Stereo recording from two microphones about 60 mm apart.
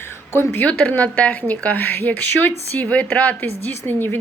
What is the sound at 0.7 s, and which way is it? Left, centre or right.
Speech, left.